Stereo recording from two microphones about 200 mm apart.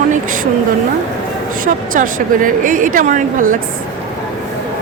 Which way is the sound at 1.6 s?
45° right (ahead or behind).